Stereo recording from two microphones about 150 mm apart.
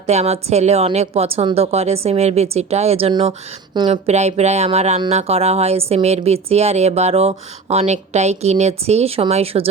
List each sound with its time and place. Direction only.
0.1 s speech: 45° right (ahead or behind)